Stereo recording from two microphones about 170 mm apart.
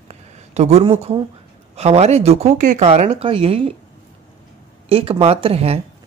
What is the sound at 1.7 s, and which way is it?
Speech, 40° right (ahead or behind).